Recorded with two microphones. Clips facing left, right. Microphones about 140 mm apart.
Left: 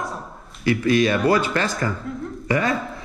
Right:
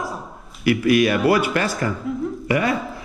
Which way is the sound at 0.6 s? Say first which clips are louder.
Right 2 dB; 25° left (ahead or behind).